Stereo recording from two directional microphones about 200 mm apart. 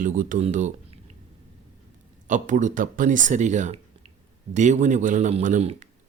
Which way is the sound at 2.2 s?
40° right (ahead or behind).